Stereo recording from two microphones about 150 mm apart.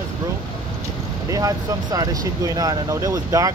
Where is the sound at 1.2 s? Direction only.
25° right (ahead or behind).